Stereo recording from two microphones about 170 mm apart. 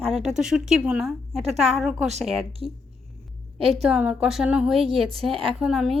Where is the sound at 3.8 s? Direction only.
5° right (ahead or behind).